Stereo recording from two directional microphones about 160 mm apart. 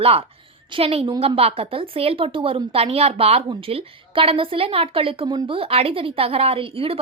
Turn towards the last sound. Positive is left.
turn(degrees=-35)  # may be behind; listen again after turning